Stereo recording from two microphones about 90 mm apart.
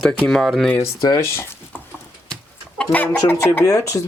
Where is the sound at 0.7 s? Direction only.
35° left (ahead or behind).